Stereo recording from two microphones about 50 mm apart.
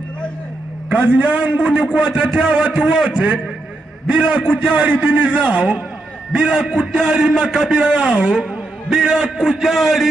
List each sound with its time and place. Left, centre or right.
0.8 s a man's voice: right; by 10.0 s centre